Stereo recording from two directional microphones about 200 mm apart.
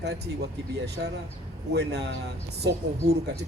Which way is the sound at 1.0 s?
65° right (ahead or behind).